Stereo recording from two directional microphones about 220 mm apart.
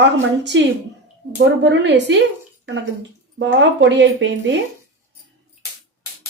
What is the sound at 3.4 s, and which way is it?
Speech, 55° right (ahead or behind).